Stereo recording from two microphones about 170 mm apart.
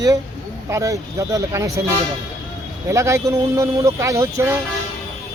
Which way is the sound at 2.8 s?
15° right (ahead or behind).